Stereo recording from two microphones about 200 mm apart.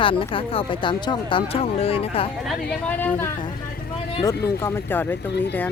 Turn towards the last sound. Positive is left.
turn(degrees=10)  # may be behind; listen again after turning